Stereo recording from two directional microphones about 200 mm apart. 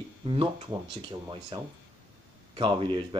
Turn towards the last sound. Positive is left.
turn(degrees=-25)  # may be behind; listen again after turning